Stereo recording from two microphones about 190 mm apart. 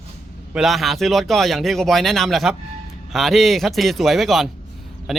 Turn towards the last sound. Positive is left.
turn(degrees=0)  # may be behind; listen again after turning